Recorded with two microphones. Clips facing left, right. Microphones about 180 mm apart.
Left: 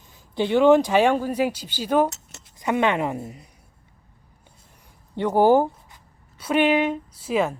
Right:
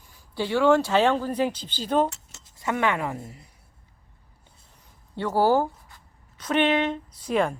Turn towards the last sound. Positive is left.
turn(degrees=5)  # may be behind; listen again after turning